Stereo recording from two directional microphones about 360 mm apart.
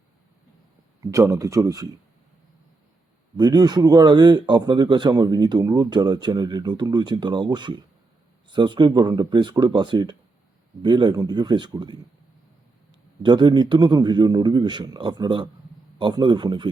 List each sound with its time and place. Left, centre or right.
1.0 s speech: centre
3.3 s speech: centre
13.2 s speech: centre